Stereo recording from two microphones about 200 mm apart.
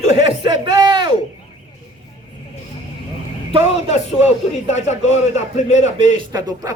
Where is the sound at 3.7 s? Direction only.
35° left (ahead or behind).